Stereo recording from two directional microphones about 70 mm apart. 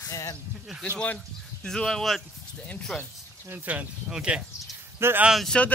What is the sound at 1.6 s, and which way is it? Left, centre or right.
Speech, centre.